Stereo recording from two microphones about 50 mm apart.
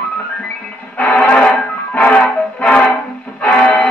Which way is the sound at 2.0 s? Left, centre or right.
Left.